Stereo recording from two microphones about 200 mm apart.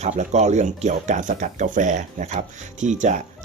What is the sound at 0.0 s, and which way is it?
Speech, 35° right (ahead or behind).